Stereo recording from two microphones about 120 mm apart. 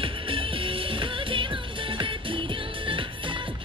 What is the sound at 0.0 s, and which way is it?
Music, 45° right (ahead or behind).